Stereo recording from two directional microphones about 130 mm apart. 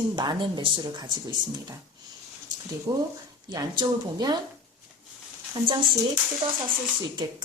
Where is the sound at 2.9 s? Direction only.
35° right (ahead or behind).